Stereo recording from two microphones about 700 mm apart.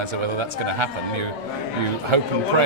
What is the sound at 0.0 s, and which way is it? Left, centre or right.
Speech, right.